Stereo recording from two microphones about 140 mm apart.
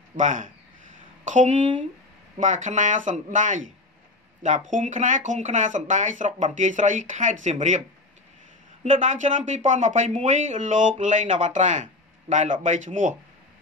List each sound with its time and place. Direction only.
0.1 s speech: 65° right (ahead or behind)
8.8 s speech: 65° right (ahead or behind)